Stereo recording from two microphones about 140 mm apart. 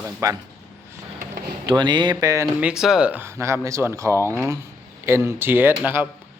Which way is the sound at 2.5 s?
5° right (ahead or behind).